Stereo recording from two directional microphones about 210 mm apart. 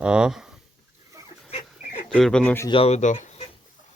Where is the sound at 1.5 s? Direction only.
30° left (ahead or behind).